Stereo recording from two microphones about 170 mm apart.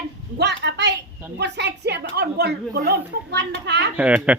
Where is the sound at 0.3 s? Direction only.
90° right.